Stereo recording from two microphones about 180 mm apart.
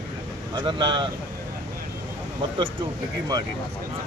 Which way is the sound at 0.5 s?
25° right (ahead or behind).